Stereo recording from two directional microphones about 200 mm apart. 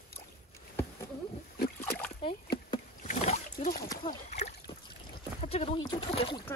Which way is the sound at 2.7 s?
35° left (ahead or behind).